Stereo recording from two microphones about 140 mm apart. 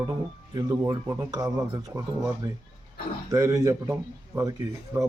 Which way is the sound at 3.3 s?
25° right (ahead or behind).